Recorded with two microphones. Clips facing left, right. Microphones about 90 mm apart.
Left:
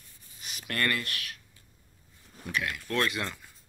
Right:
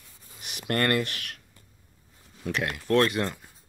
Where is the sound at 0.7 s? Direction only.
40° right (ahead or behind).